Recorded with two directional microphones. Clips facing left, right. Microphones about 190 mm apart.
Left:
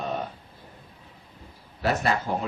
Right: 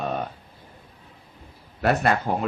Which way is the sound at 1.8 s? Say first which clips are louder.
Right 3 dB; 55° right (ahead or behind).